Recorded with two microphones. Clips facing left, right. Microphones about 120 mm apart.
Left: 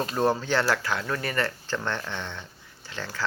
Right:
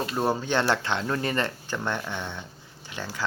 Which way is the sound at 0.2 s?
15° right (ahead or behind).